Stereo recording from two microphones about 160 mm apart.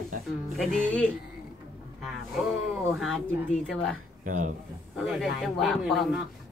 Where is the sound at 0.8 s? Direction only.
5° left (ahead or behind).